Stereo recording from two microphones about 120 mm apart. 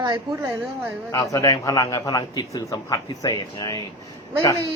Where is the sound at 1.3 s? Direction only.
30° left (ahead or behind).